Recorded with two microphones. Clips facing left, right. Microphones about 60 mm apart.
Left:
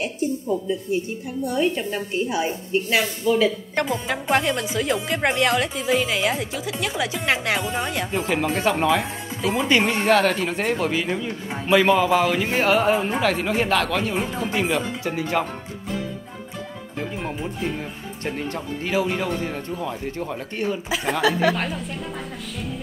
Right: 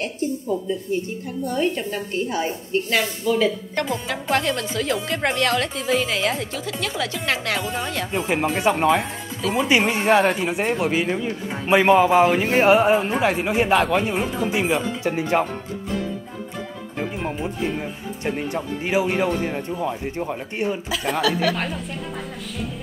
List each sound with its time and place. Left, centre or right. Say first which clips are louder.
0.0 s speech: even; centre
8.2 s speech: right 2 dB; centre
11.6 s speech: right 2 dB; right
14.1 s speech: right 2 dB; centre
15.0 s speech: right 4 dB; right
17.0 s speech: right 2 dB; centre
21.2 s speech: left 2 dB; left